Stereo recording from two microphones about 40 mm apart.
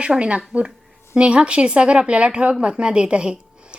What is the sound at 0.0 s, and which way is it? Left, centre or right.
Speech, right.